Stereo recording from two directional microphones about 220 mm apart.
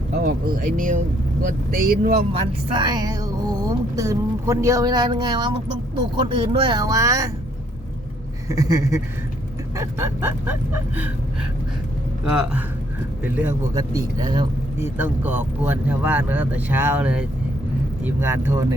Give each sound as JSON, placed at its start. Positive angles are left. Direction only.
{"t": 0.1, "sound": "speech", "side_deg": -40}
{"t": 2.7, "sound": "speech", "side_deg": -20}
{"t": 8.4, "sound": "speech", "side_deg": -15}
{"t": 12.3, "sound": "speech", "side_deg": -5}